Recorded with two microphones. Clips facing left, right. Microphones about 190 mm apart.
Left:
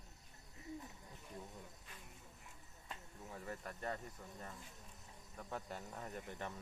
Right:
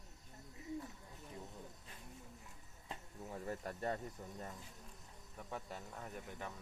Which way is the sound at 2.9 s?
25° right (ahead or behind).